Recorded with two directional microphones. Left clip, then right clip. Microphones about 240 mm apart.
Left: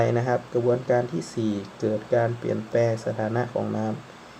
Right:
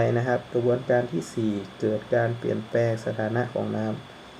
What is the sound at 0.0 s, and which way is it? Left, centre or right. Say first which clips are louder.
Speech: left 1 dB; centre.